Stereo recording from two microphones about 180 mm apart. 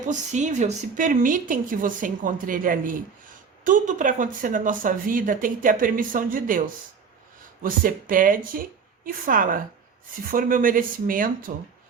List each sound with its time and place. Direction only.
0.0 s speech: 45° right (ahead or behind)